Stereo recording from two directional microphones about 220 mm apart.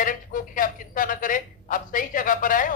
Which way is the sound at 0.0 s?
40° left (ahead or behind).